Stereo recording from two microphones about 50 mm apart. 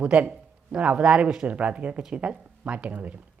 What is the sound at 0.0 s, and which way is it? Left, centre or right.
A woman's voice, right.